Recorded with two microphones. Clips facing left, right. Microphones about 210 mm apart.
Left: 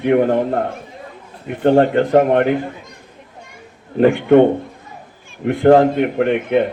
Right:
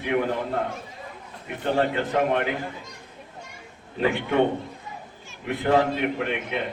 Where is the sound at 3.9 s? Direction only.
55° left (ahead or behind).